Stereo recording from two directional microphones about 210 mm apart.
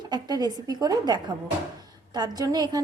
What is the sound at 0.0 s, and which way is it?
A woman's voice, 20° right (ahead or behind).